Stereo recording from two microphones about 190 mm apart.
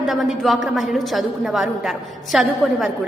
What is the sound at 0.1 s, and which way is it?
A woman's voice, centre (ahead or behind).